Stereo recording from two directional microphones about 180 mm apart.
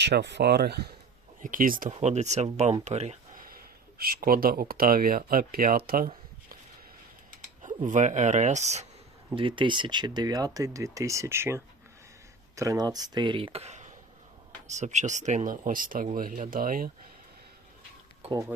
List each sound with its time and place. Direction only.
0.0 s speech: 75° right (ahead or behind)
1.4 s speech: 45° right (ahead or behind)
3.3 s speech: 55° right (ahead or behind)
7.3 s speech: 45° right (ahead or behind)